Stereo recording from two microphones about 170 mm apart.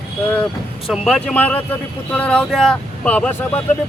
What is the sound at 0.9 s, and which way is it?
Speech, 5° left (ahead or behind).